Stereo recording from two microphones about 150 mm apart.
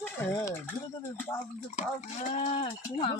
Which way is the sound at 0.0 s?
20° left (ahead or behind).